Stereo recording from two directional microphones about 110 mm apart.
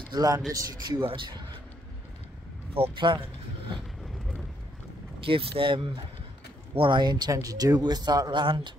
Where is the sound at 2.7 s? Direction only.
55° right (ahead or behind).